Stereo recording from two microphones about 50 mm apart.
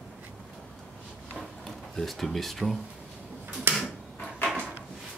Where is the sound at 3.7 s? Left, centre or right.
Right.